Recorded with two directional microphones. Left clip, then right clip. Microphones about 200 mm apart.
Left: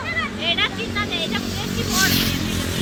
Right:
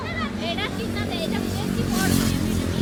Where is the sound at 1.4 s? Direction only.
50° right (ahead or behind).